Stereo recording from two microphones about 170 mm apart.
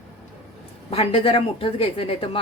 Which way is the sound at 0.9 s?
35° left (ahead or behind).